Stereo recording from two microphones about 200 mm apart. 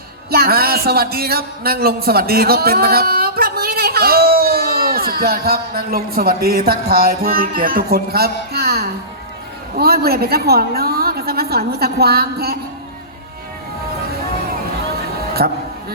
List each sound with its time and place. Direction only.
0.3 s a man's voice: 50° right (ahead or behind)
15.4 s a man's voice: 50° right (ahead or behind)